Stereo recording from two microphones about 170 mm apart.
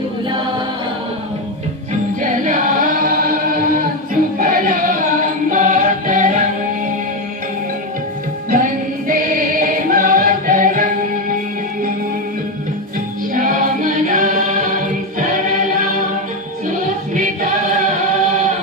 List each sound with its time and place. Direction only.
2.2 s singing: 50° right (ahead or behind)
8.4 s music: 50° right (ahead or behind)
13.3 s music: 50° right (ahead or behind)